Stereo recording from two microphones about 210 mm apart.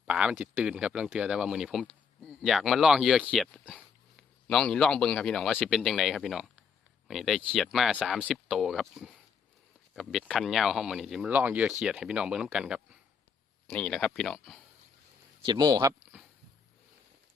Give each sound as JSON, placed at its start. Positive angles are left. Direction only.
{"t": 0.0, "sound": "speech", "side_deg": -5}
{"t": 15.4, "sound": "speech", "side_deg": -20}